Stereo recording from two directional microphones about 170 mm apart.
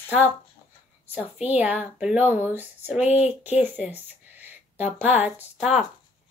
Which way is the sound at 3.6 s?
10° right (ahead or behind).